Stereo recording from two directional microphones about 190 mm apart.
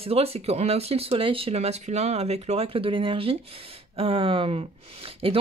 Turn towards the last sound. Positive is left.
turn(degrees=-30)  # may be behind; listen again after turning